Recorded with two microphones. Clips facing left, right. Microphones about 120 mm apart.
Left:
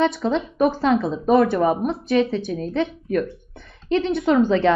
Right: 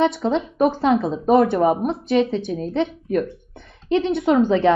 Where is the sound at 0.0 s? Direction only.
20° right (ahead or behind).